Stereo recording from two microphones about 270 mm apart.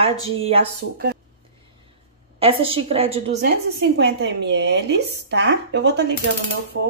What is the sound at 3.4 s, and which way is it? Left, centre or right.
Speech, right.